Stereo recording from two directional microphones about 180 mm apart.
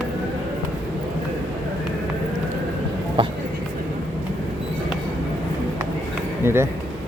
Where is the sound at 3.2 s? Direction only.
30° right (ahead or behind).